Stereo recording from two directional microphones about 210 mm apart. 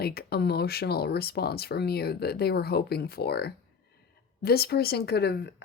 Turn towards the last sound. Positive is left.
turn(degrees=50)  # may be behind; listen again after turning